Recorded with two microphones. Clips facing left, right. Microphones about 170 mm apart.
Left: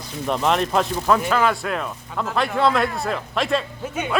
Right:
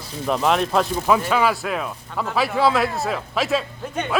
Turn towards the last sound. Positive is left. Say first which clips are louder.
# even
turn(degrees=0)  # may be behind; listen again after turning